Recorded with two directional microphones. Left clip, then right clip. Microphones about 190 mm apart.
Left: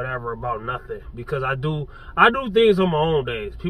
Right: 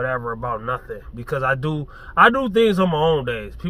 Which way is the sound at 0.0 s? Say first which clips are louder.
Right 3 dB; 35° right (ahead or behind).